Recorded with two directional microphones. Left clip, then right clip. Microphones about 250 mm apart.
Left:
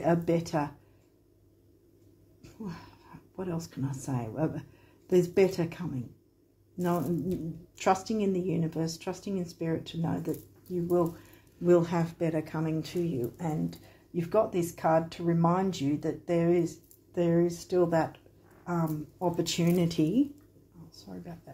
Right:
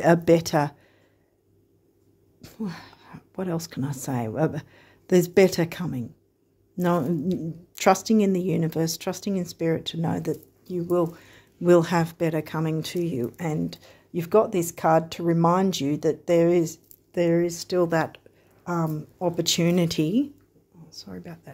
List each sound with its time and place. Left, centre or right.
0.0 s speech: right
2.4 s speech: right